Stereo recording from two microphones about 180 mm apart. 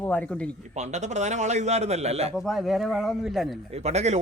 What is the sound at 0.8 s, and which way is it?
A man's voice, 40° right (ahead or behind).